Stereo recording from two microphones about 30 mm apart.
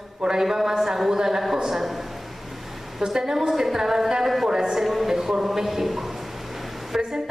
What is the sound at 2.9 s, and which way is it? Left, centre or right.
A woman's voice, centre.